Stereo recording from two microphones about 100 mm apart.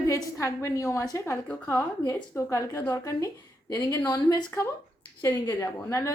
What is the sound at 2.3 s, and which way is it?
A woman's voice, 25° left (ahead or behind).